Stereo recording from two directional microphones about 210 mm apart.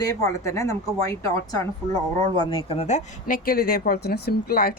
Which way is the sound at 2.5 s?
30° left (ahead or behind).